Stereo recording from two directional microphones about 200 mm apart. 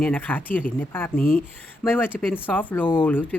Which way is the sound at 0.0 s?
5° left (ahead or behind).